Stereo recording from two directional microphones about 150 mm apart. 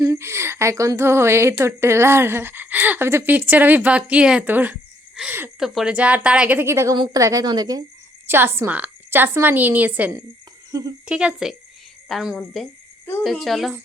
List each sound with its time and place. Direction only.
0.0 s a woman's voice: 20° right (ahead or behind)
8.3 s speech: 15° right (ahead or behind); by 13.7 s centre (ahead or behind)